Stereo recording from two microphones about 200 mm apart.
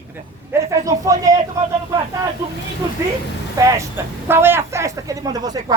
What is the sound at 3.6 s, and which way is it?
Speech, 15° right (ahead or behind).